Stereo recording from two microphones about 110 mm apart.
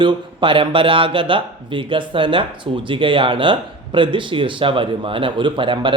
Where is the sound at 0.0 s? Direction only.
45° right (ahead or behind).